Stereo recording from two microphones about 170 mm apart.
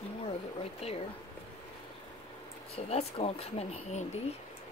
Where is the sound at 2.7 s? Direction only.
35° left (ahead or behind).